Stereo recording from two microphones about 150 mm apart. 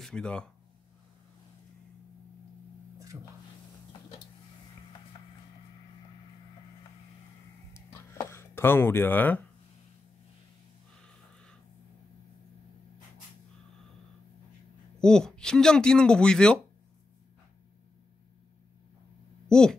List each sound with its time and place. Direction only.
0.0 s speech: 5° left (ahead or behind)
3.1 s speech: 10° right (ahead or behind)
7.7 s a sound: 20° left (ahead or behind)
11.1 s a sound: 5° left (ahead or behind)
15.0 s speech: 5° left (ahead or behind)
19.5 s speech: 5° left (ahead or behind)